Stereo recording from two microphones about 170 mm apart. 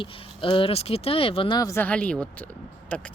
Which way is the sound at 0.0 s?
30° left (ahead or behind).